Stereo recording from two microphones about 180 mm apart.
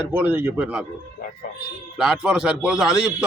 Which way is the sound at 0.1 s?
10° right (ahead or behind).